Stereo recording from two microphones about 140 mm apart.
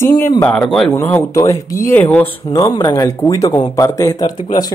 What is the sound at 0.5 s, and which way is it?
Speech, centre (ahead or behind).